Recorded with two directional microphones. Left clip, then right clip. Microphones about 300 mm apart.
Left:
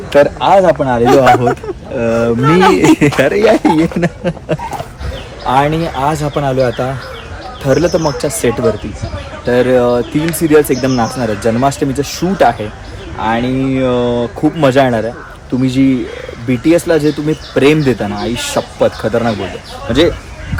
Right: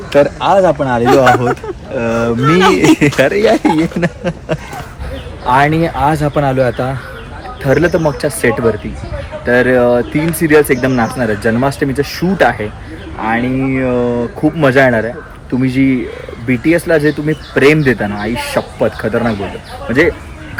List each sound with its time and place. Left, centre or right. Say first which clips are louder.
0.1 s speech: left 2 dB; centre